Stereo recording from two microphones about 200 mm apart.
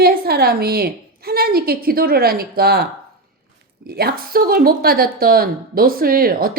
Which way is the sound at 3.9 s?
50° right (ahead or behind).